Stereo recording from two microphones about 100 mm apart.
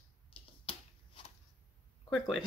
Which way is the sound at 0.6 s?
70° left (ahead or behind).